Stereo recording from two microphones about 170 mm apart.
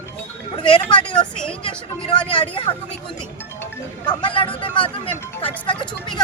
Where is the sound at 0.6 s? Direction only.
30° left (ahead or behind).